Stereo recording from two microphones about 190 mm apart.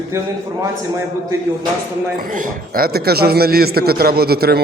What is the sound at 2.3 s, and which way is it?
A man's voice, 45° right (ahead or behind).